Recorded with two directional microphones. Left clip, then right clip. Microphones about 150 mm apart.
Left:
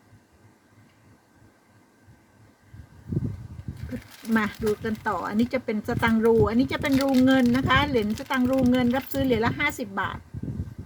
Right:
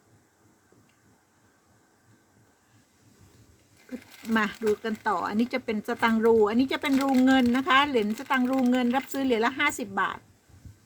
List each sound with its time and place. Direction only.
4.3 s speech: 15° right (ahead or behind)